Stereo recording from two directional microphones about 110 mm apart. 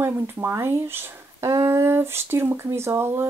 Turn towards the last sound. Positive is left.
turn(degrees=-25)  # may be behind; listen again after turning